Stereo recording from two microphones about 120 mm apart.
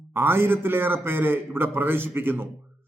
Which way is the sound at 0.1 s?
20° right (ahead or behind).